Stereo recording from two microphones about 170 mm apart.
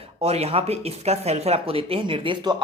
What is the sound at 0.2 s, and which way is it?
Speech, 40° right (ahead or behind).